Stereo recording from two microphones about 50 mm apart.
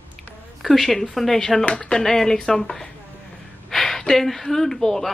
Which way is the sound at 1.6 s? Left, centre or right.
Left.